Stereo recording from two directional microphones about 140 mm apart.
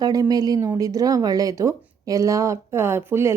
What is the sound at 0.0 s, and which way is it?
Speech, 25° right (ahead or behind).